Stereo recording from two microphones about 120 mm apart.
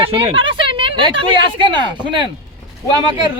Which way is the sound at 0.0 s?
50° right (ahead or behind).